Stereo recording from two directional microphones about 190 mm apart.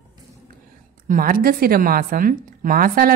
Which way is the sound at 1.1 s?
50° right (ahead or behind).